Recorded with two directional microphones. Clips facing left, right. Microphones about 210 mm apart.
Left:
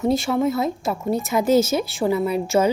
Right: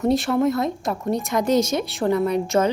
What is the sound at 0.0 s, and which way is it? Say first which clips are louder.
A woman's voice: right 1 dB; centre (ahead or behind).